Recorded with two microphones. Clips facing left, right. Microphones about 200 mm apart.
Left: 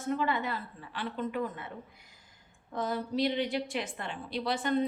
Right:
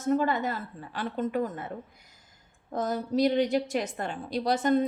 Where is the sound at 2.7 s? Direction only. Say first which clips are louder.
Right 4 dB; 40° right (ahead or behind).